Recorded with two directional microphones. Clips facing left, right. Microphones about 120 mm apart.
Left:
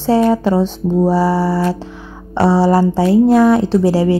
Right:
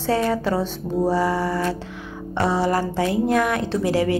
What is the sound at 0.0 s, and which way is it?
A woman's voice, 30° left (ahead or behind).